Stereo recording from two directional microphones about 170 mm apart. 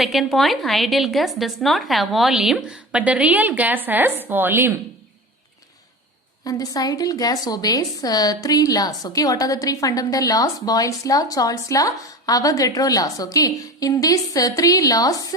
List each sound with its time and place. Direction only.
0.0 s a woman's voice: centre (ahead or behind)
6.4 s a woman's voice: 20° left (ahead or behind)